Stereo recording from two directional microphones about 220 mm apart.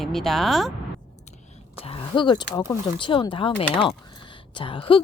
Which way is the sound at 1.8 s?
25° left (ahead or behind).